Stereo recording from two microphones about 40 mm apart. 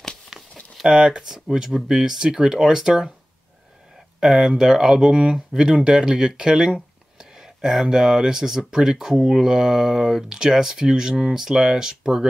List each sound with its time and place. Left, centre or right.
0.3 s a sound: centre
0.8 s speech: centre
4.2 s speech: centre